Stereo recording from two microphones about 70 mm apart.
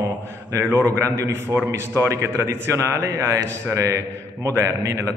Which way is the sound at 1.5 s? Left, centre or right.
Right.